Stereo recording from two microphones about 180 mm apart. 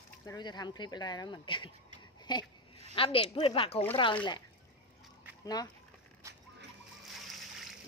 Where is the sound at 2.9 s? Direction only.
30° left (ahead or behind).